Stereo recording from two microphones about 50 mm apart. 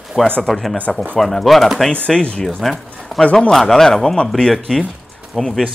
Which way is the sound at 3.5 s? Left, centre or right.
Centre.